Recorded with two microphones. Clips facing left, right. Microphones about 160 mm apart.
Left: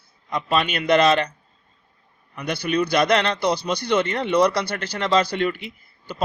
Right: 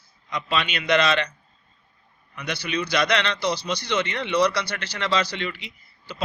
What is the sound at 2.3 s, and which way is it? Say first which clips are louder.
A man's voice: left 6 dB; 50° left (ahead or behind).